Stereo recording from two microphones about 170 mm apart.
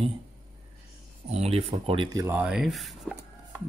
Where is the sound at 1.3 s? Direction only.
35° right (ahead or behind).